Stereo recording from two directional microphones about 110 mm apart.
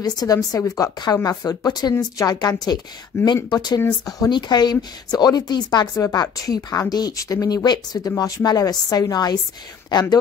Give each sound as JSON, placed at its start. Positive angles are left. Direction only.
{"t": 0.0, "sound": "speech", "side_deg": 35}
{"t": 3.1, "sound": "speech", "side_deg": 25}
{"t": 3.4, "sound": "speech", "side_deg": 35}